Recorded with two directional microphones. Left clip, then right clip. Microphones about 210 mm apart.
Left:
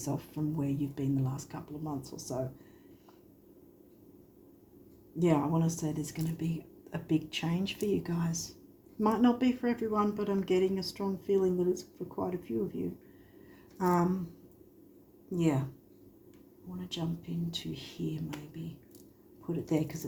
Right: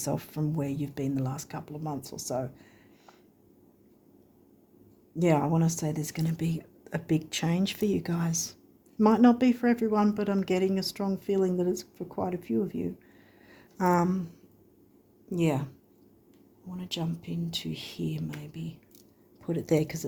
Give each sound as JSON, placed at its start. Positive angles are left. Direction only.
{"t": 0.0, "sound": "speech", "side_deg": -55}
{"t": 5.2, "sound": "speech", "side_deg": -50}
{"t": 13.7, "sound": "speech", "side_deg": -55}
{"t": 15.4, "sound": "speech", "side_deg": -55}
{"t": 16.7, "sound": "speech", "side_deg": -55}